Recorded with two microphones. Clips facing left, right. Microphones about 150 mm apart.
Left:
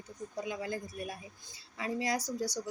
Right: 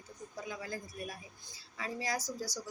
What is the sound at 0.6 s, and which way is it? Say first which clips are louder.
A woman's voice: left 4 dB; 25° left (ahead or behind).